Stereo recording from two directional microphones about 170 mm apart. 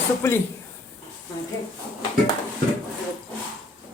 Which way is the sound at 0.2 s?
20° left (ahead or behind).